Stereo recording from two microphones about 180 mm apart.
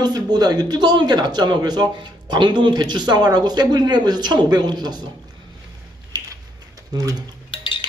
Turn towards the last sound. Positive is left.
turn(degrees=30)  # may be behind; listen again after turning